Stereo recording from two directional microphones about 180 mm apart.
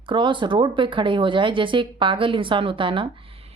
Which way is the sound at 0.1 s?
25° right (ahead or behind).